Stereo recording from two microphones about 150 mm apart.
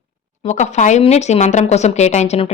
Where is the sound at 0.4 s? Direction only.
50° left (ahead or behind).